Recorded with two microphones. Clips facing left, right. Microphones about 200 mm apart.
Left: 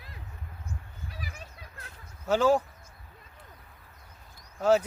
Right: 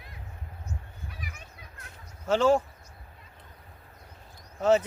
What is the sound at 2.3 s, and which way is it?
Speech, 5° left (ahead or behind).